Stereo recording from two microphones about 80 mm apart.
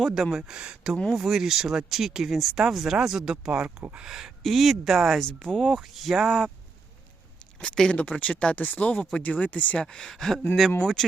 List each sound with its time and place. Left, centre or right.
0.0 s speech: centre
7.6 s speech: centre
9.8 s speech: centre